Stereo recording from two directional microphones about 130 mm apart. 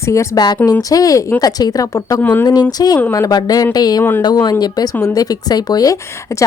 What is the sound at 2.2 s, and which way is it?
Speech, 15° left (ahead or behind).